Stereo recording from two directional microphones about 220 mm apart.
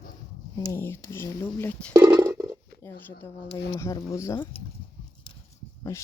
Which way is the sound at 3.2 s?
10° left (ahead or behind).